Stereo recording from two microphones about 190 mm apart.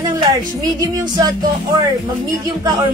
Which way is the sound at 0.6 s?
20° right (ahead or behind).